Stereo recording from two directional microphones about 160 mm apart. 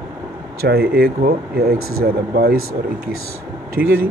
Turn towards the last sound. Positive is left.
turn(degrees=-65)  # may be behind; listen again after turning